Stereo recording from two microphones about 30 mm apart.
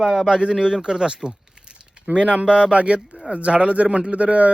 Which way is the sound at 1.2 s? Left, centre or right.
Right.